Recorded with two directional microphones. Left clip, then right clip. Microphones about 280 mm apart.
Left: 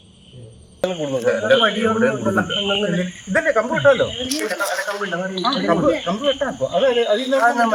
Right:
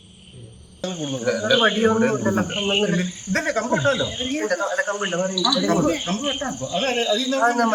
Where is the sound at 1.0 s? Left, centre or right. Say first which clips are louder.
Left 4 dB; centre.